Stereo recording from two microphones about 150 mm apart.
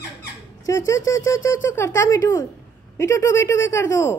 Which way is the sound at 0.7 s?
20° left (ahead or behind).